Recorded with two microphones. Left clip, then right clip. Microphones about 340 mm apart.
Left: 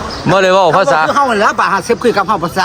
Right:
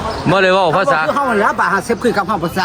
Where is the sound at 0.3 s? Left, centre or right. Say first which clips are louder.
Left 3 dB; centre.